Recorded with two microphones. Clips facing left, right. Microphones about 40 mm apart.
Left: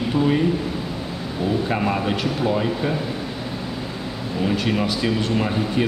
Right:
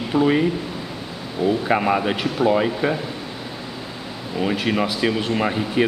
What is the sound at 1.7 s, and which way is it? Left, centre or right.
Speech, centre.